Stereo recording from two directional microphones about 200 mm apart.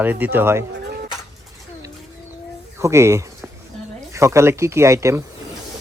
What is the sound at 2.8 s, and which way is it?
Speech, 15° right (ahead or behind).